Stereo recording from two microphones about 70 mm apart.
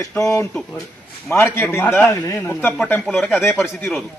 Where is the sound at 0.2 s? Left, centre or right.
Left.